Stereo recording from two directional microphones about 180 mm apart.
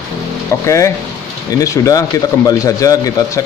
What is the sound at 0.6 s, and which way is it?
A man's voice, 15° left (ahead or behind).